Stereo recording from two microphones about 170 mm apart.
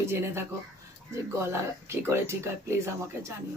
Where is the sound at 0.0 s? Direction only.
15° right (ahead or behind).